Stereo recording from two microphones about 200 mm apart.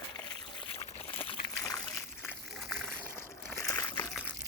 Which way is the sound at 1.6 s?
15° left (ahead or behind).